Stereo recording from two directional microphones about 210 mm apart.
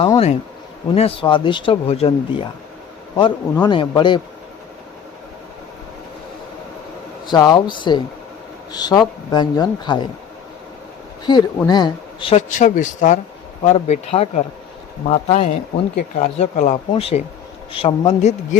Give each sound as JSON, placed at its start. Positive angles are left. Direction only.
{"t": 0.0, "sound": "speech", "side_deg": 25}
{"t": 3.6, "sound": "speech", "side_deg": 20}
{"t": 7.3, "sound": "speech", "side_deg": 20}
{"t": 11.3, "sound": "speech", "side_deg": 20}